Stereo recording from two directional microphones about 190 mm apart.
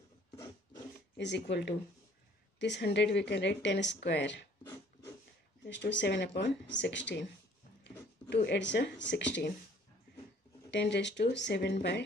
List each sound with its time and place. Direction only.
1.1 s speech: 65° left (ahead or behind)
5.7 s speech: 70° left (ahead or behind)
8.5 s speech: 65° left (ahead or behind)
10.7 s speech: 65° left (ahead or behind)